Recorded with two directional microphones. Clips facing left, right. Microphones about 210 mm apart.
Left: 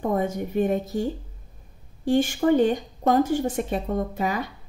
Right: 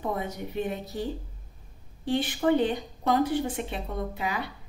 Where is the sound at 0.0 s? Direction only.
45° left (ahead or behind).